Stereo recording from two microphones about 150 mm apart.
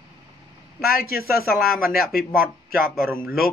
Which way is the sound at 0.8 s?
80° left.